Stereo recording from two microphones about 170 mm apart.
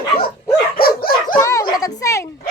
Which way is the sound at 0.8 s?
60° left (ahead or behind).